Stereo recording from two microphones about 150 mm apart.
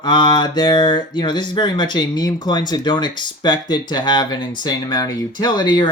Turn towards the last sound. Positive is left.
turn(degrees=30)  # may be behind; listen again after turning